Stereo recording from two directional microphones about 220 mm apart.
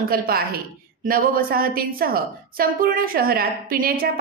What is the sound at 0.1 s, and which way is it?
A woman's voice, 45° right (ahead or behind).